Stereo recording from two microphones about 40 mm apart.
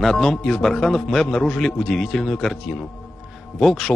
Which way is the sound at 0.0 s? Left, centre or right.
Centre.